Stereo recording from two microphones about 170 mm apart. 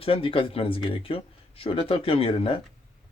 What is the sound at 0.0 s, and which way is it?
Speech, 35° left (ahead or behind).